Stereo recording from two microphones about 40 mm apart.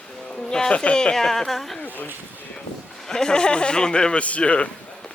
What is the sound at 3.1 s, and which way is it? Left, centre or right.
Speech, centre.